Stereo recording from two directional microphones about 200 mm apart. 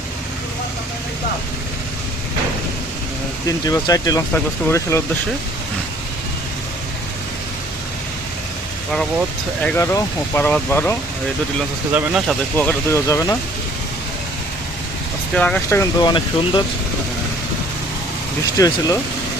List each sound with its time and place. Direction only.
3.7 s speech: 20° left (ahead or behind)
9.6 s speech: 15° left (ahead or behind)
11.9 s speech: 5° right (ahead or behind)
12.5 s speech: 10° left (ahead or behind)
15.4 s speech: 5° left (ahead or behind)
18.5 s speech: 15° left (ahead or behind)